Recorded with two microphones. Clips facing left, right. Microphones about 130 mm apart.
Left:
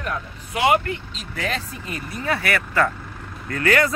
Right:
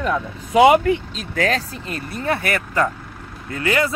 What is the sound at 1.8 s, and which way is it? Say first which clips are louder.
Speech: right 3 dB; 20° left (ahead or behind).